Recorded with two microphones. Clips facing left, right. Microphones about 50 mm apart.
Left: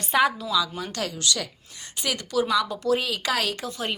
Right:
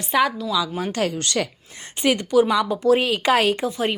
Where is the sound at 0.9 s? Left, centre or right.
Right.